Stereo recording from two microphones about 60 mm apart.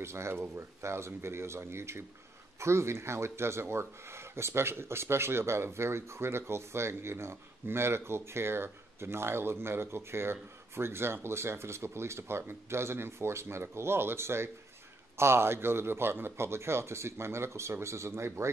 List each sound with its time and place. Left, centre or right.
0.0 s speech: right